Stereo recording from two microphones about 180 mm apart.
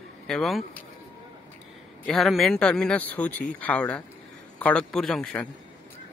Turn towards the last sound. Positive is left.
turn(degrees=5)  # may be behind; listen again after turning